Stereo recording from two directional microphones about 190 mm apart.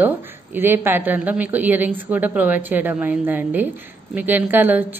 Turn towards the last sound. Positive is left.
turn(degrees=-10)  # may be behind; listen again after turning